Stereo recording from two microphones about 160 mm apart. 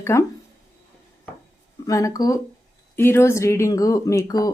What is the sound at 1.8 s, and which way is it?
Speech, 20° left (ahead or behind).